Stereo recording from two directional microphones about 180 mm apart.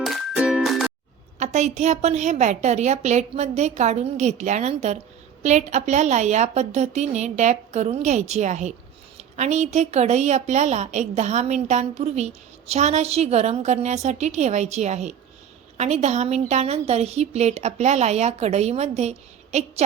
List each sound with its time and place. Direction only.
0.0 s music: centre (ahead or behind)
1.4 s a woman's voice: 40° right (ahead or behind)